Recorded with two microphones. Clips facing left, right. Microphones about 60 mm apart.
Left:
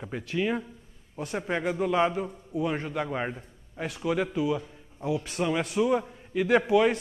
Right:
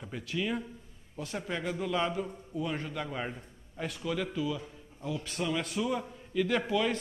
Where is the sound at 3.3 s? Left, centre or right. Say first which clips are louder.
Left 2 dB; centre.